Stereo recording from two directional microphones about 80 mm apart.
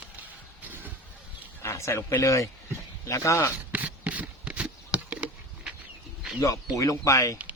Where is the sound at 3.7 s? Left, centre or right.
Centre.